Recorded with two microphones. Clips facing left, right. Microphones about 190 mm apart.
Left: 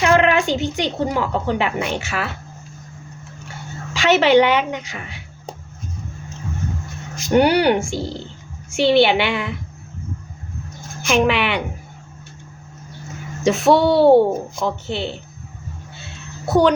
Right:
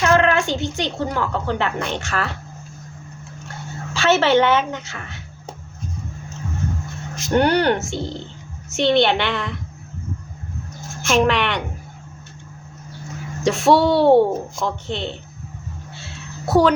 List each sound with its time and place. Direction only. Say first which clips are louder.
0.0 s a woman's voice: left 1 dB; 15° left (ahead or behind)
3.9 s a woman's voice: left 2 dB; 15° left (ahead or behind)
7.3 s a woman's voice: left 2 dB; 10° left (ahead or behind)
11.0 s a woman's voice: even; centre (ahead or behind)
13.4 s a woman's voice: left 1 dB; centre (ahead or behind)
16.0 s a sound: right 1 dB; centre (ahead or behind)